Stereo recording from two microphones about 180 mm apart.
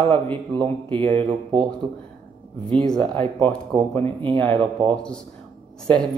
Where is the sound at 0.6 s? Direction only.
30° right (ahead or behind).